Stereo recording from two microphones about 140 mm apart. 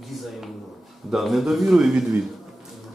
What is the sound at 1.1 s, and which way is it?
Speech, centre (ahead or behind).